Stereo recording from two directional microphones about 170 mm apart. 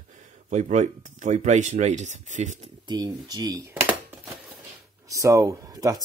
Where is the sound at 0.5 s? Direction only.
45° right (ahead or behind).